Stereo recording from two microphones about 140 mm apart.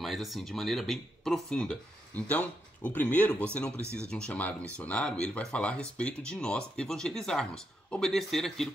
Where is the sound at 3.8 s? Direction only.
20° right (ahead or behind).